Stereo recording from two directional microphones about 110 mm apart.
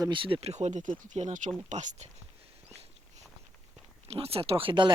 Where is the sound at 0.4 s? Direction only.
90° right.